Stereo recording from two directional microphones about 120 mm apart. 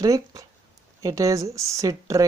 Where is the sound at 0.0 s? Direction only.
30° right (ahead or behind).